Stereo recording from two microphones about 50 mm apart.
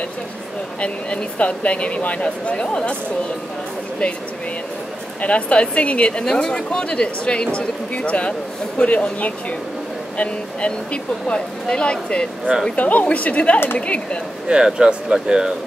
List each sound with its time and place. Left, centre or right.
0.7 s speech: left
5.2 s speech: left
12.7 s speech: left
14.5 s speech: centre